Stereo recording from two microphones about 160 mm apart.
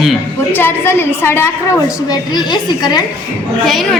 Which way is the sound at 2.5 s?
25° left (ahead or behind).